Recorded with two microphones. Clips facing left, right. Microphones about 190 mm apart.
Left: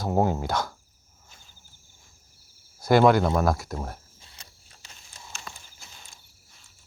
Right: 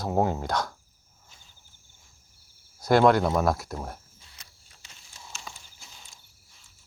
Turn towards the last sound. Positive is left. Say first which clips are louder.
# left 2 dB
turn(degrees=60)  # may be behind; listen again after turning